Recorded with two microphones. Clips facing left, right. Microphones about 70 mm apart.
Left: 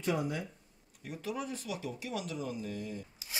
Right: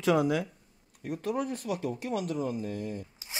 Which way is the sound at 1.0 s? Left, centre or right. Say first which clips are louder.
Right 7 dB; right.